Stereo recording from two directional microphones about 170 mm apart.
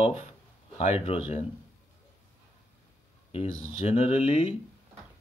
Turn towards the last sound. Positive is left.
turn(degrees=40)  # may be behind; listen again after turning